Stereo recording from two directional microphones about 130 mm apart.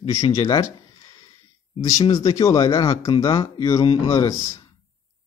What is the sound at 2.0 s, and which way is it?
A man's voice, 30° left (ahead or behind).